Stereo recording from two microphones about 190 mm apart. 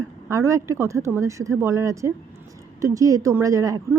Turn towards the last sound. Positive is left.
turn(degrees=-15)  # may be behind; listen again after turning